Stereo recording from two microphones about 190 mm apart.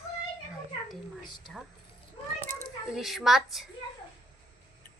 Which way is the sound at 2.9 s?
Centre (ahead or behind).